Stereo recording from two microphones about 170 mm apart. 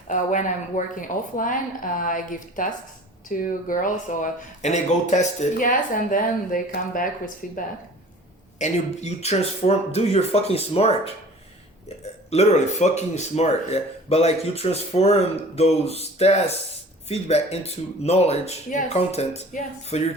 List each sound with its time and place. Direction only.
0.1 s speech: 45° left (ahead or behind)
8.5 s speech: 45° left (ahead or behind)
12.3 s speech: 40° left (ahead or behind)